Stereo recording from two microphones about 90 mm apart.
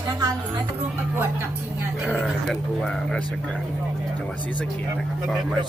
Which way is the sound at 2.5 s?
10° left (ahead or behind).